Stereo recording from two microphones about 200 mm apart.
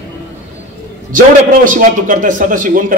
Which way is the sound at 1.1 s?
45° right (ahead or behind).